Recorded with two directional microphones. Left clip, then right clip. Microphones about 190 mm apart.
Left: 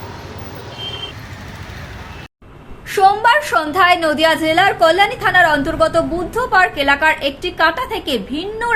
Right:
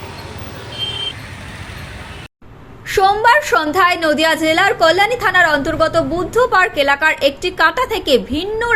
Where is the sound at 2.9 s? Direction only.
20° right (ahead or behind).